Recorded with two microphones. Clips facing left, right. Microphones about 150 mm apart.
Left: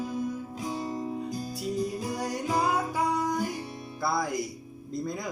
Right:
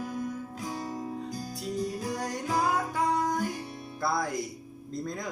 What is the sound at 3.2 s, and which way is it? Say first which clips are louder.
Music: even; 5° left (ahead or behind).